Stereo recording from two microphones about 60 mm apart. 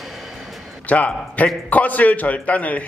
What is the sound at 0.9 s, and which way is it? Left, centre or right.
A man's voice, left.